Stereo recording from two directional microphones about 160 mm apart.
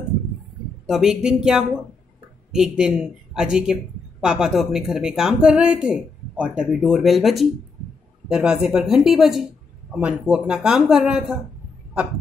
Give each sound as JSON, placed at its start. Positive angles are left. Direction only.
{"t": 0.8, "sound": "speech", "side_deg": -5}